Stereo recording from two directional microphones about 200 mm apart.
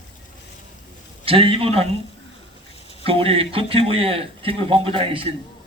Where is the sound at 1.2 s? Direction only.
25° right (ahead or behind).